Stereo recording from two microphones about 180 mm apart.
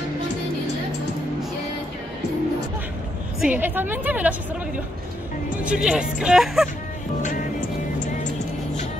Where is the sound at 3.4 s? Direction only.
10° right (ahead or behind).